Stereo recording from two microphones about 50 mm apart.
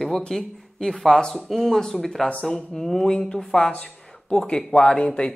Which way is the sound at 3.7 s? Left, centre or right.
Left.